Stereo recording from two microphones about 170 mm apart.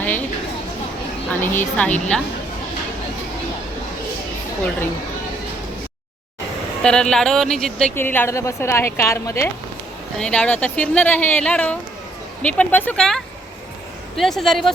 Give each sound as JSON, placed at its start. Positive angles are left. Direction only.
{"t": 0.0, "sound": "a sound", "side_deg": 10}
{"t": 1.3, "sound": "speech", "side_deg": 10}
{"t": 6.8, "sound": "speech", "side_deg": 5}
{"t": 10.2, "sound": "speech", "side_deg": 5}